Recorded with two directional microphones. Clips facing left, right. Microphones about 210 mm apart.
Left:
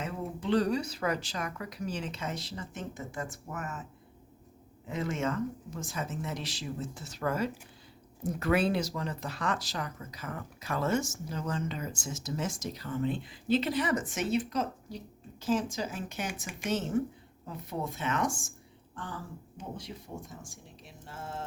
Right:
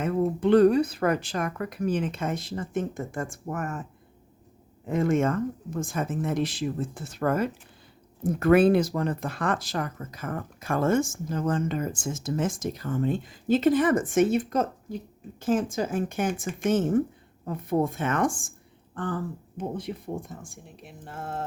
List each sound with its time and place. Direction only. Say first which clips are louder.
0.0 s speech: right 11 dB; 55° right (ahead or behind)
4.9 s speech: right 9 dB; 50° right (ahead or behind)